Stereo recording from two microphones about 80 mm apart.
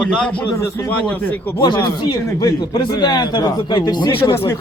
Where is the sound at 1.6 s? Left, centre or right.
Left.